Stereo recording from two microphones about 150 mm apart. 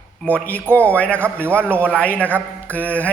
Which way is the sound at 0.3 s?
10° left (ahead or behind).